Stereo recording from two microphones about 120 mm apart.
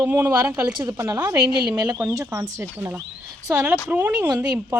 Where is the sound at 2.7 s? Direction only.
15° right (ahead or behind).